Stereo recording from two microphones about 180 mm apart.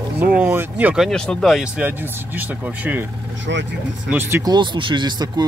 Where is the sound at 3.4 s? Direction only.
85° right.